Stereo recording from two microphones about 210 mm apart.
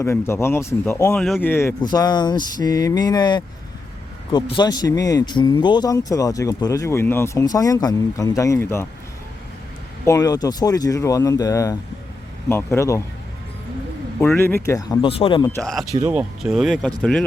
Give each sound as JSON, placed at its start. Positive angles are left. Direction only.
{"t": 0.0, "sound": "speech", "side_deg": 10}
{"t": 1.1, "sound": "speech", "side_deg": 5}
{"t": 10.1, "sound": "speech", "side_deg": 15}
{"t": 14.2, "sound": "speech", "side_deg": 10}
{"t": 15.4, "sound": "speech", "side_deg": 5}